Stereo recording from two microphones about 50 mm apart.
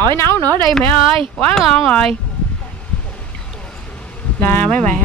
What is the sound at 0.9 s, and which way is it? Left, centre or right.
Speech, left.